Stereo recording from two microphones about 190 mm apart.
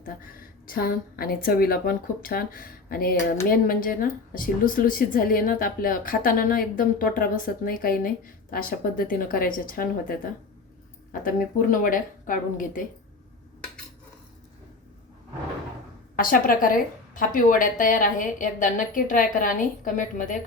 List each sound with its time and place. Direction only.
0.0 s a woman's voice: 50° left (ahead or behind)
16.1 s a woman's voice: 45° left (ahead or behind)